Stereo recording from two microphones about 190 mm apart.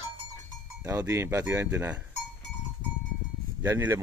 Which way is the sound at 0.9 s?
15° right (ahead or behind).